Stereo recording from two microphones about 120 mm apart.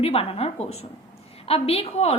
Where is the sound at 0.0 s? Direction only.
55° left (ahead or behind).